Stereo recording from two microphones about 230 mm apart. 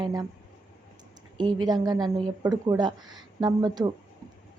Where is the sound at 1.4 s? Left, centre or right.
Centre.